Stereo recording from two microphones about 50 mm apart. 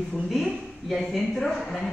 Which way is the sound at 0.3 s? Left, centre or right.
Centre.